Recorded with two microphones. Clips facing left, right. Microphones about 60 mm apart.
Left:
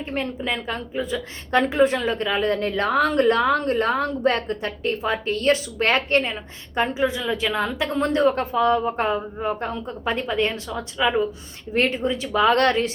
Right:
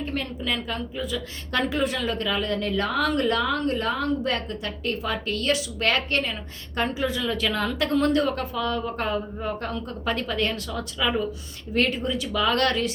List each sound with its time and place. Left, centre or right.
0.0 s a woman's voice: left
6.7 s a woman's voice: centre